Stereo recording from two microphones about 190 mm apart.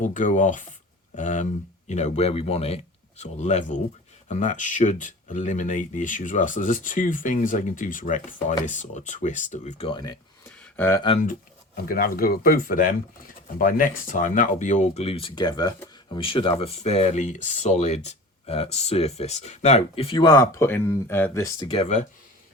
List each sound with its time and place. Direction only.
0.0 s speech: 40° left (ahead or behind); by 10.5 s 20° left (ahead or behind)
10.6 s a sound: 10° left (ahead or behind)
11.9 s speech: 50° left (ahead or behind); by 22.0 s 35° left (ahead or behind)